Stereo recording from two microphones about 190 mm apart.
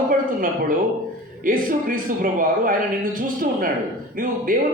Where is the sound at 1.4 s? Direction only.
45° right (ahead or behind).